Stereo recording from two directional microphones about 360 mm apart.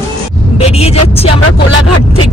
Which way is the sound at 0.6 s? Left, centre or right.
Centre.